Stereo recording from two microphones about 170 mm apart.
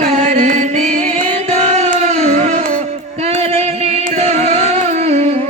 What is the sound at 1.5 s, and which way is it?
Music, 40° right (ahead or behind).